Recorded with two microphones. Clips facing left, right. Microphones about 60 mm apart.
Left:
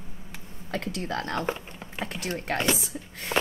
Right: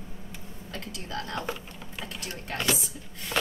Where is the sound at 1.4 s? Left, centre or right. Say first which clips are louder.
Left 4 dB; left.